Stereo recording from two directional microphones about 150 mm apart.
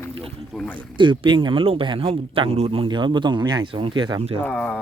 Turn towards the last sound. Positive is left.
turn(degrees=5)  # may be behind; listen again after turning